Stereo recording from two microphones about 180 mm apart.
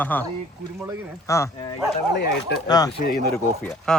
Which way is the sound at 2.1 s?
70° left (ahead or behind).